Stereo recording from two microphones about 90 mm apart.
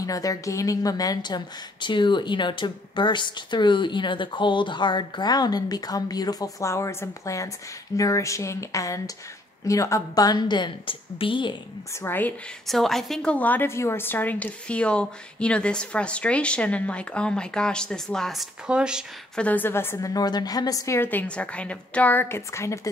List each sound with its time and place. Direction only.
0.0 s a woman's voice: 40° left (ahead or behind)
6.6 s a woman's voice: 35° left (ahead or behind); by 11.5 s 70° left (ahead or behind)
11.9 s a woman's voice: 25° left (ahead or behind)
12.6 s a woman's voice: 5° left (ahead or behind)
19.3 s a woman's voice: 15° left (ahead or behind)
20.0 s a woman's voice: 45° left (ahead or behind)
21.0 s a woman's voice: 20° left (ahead or behind)